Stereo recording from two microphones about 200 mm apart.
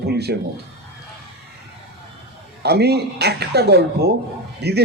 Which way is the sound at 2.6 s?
55° right (ahead or behind).